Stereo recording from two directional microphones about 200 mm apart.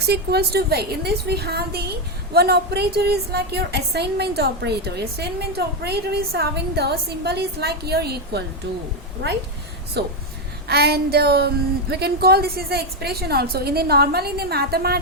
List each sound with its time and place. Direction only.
0.1 s a woman's voice: 55° right (ahead or behind)
10.0 s a woman's voice: 55° right (ahead or behind)